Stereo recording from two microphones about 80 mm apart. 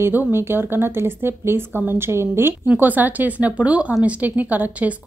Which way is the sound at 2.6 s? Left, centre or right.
Centre.